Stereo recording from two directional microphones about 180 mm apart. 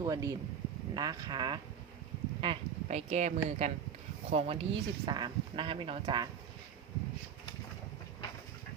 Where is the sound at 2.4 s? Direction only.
35° right (ahead or behind).